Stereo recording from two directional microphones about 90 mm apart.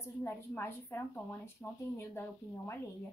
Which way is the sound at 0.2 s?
25° left (ahead or behind).